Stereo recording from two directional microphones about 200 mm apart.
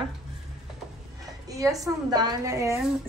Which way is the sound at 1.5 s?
15° right (ahead or behind).